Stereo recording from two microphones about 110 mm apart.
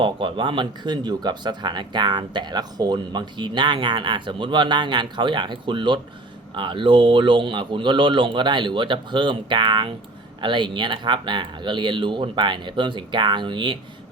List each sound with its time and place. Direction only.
0.0 s speech: 50° right (ahead or behind)